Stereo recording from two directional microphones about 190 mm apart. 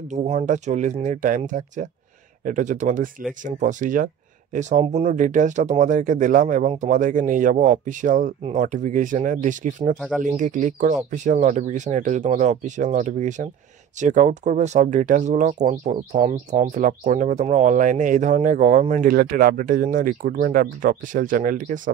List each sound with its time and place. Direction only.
0.1 s speech: 35° right (ahead or behind)
9.9 s speech: 5° right (ahead or behind)
10.2 s speech: 40° right (ahead or behind)